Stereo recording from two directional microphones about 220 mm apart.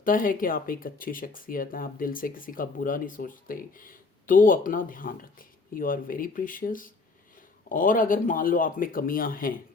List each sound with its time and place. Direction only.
0.0 s speech: 40° left (ahead or behind)